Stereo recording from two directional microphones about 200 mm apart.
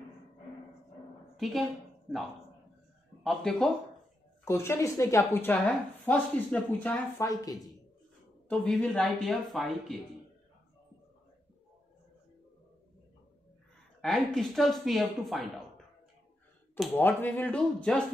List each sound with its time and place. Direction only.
1.3 s a woman's voice: centre (ahead or behind)
3.3 s speech: centre (ahead or behind)
4.5 s speech: 15° left (ahead or behind)
8.5 s speech: 5° left (ahead or behind)
14.0 s speech: centre (ahead or behind)
16.7 s speech: 10° left (ahead or behind)